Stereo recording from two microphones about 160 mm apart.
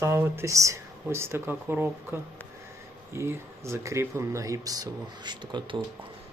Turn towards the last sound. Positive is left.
turn(degrees=-30)  # may be behind; listen again after turning